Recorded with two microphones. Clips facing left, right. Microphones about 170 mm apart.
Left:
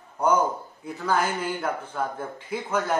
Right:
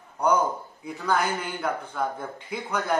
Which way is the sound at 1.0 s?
5° left (ahead or behind).